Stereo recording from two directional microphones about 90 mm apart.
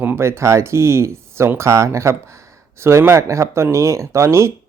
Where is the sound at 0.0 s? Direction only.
25° right (ahead or behind).